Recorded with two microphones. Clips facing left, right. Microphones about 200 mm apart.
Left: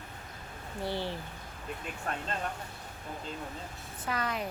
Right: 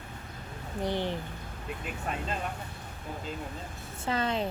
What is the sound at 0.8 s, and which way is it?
Speech, 20° right (ahead or behind).